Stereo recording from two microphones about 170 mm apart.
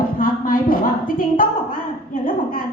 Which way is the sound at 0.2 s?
55° left (ahead or behind).